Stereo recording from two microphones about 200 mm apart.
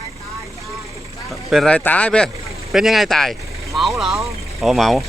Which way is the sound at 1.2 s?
Centre (ahead or behind).